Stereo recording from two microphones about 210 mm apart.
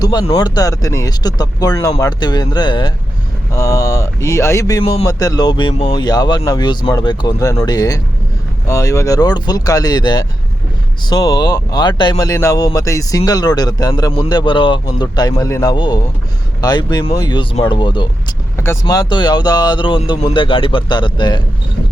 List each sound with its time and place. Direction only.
0.0 s speech: 20° left (ahead or behind)